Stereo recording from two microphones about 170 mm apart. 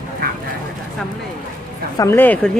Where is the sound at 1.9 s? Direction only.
15° left (ahead or behind).